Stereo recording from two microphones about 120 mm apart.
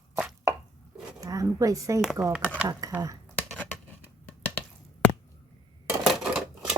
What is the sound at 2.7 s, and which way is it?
Speech, 30° right (ahead or behind).